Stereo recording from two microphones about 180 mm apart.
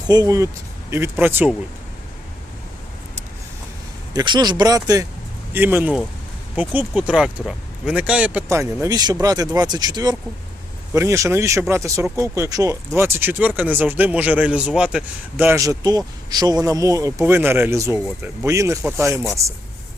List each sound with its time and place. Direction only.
0.1 s a man's voice: 20° right (ahead or behind)
4.1 s a man's voice: 20° right (ahead or behind)